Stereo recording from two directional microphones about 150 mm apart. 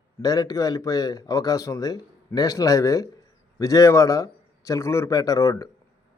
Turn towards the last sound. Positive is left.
turn(degrees=20)  # may be behind; listen again after turning